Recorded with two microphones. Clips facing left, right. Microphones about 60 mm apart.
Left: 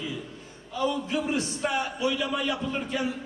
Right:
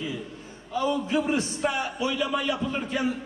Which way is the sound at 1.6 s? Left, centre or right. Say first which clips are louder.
Even; centre.